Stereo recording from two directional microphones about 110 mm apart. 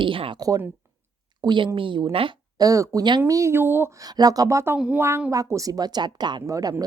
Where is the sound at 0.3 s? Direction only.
35° right (ahead or behind).